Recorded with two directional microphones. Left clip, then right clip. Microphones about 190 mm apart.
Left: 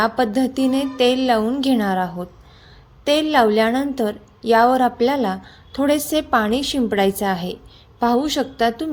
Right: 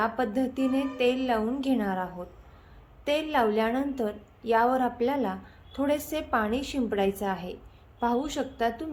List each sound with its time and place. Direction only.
0.0 s a woman's voice: 40° left (ahead or behind)